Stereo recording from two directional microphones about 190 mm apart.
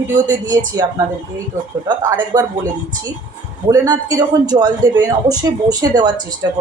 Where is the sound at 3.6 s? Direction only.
20° right (ahead or behind).